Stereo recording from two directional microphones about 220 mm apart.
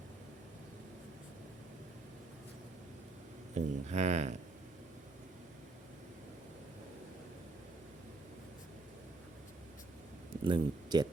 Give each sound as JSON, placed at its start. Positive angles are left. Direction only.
{"t": 3.5, "sound": "speech", "side_deg": -30}
{"t": 10.4, "sound": "speech", "side_deg": -20}